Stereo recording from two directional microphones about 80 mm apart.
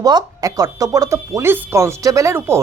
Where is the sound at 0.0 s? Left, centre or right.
Right.